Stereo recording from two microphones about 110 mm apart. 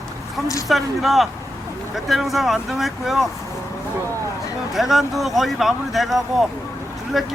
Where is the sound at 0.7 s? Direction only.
Centre (ahead or behind).